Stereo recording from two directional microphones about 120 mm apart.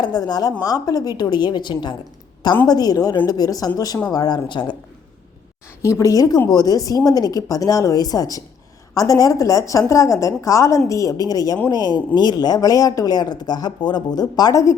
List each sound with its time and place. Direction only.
0.0 s speech: 35° left (ahead or behind)
5.8 s a woman's voice: 25° left (ahead or behind)